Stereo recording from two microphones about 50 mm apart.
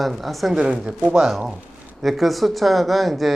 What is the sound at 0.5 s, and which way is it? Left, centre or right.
Speech, centre.